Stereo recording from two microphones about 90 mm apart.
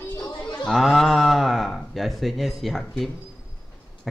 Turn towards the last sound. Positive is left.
turn(degrees=0)  # may be behind; listen again after turning